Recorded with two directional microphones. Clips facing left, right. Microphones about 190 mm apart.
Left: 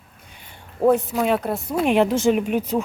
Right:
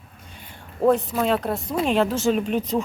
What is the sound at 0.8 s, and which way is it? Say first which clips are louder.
A woman's voice: left 1 dB; 10° left (ahead or behind).